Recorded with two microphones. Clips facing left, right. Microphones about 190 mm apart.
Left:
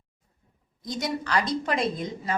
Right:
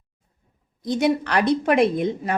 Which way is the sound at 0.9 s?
60° right (ahead or behind).